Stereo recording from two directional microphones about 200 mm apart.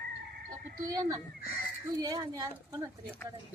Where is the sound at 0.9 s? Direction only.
15° right (ahead or behind).